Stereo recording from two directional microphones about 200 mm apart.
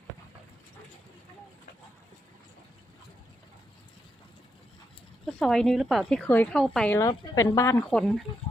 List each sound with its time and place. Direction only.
5.2 s a woman's voice: centre (ahead or behind)
7.1 s speech: 20° left (ahead or behind)
7.9 s a woman's voice: centre (ahead or behind)